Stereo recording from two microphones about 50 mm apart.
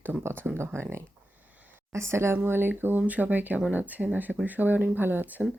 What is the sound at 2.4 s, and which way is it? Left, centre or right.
Speech, right.